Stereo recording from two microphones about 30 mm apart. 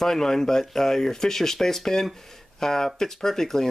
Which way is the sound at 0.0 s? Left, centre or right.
Centre.